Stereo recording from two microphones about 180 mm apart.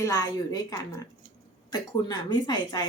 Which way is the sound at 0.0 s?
20° left (ahead or behind).